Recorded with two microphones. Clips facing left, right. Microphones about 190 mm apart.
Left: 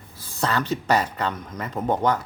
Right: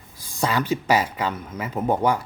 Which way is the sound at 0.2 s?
15° right (ahead or behind).